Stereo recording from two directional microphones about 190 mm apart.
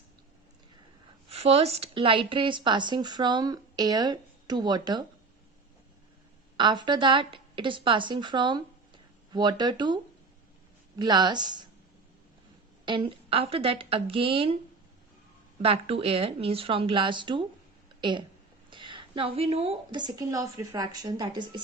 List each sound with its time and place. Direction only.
1.3 s speech: 30° right (ahead or behind)
6.6 s a woman's voice: 25° right (ahead or behind)
12.8 s speech: 25° right (ahead or behind)
15.6 s speech: 30° right (ahead or behind)
18.7 s speech: 25° right (ahead or behind)